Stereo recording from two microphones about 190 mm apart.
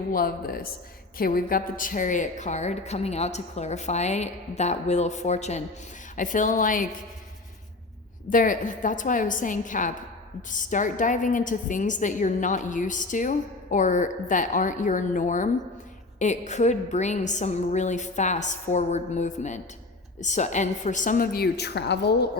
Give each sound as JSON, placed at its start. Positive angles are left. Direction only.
{"t": 0.1, "sound": "a woman's voice", "side_deg": 50}
{"t": 8.3, "sound": "a woman's voice", "side_deg": 45}